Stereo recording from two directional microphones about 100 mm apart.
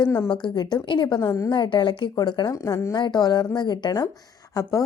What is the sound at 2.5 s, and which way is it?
Speech, 35° left (ahead or behind).